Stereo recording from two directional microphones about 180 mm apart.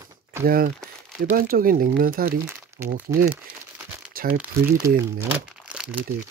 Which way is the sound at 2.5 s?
10° right (ahead or behind).